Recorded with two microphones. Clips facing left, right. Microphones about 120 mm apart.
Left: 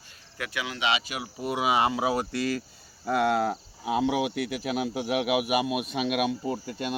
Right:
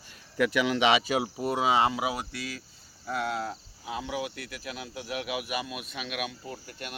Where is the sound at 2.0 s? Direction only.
35° left (ahead or behind).